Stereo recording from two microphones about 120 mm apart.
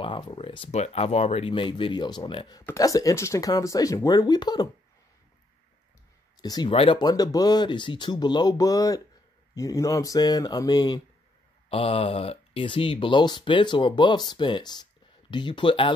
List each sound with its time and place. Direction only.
0.0 s speech: 45° left (ahead or behind)
0.7 s speech: 70° left (ahead or behind); by 2.6 s 40° left (ahead or behind)
2.6 s speech: 25° left (ahead or behind)
6.4 s speech: 35° left (ahead or behind)
6.7 s speech: 50° left (ahead or behind)
7.0 s speech: 35° left (ahead or behind)
11.7 s speech: 50° left (ahead or behind)